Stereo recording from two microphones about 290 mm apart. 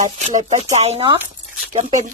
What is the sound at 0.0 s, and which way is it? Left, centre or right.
Speech, right.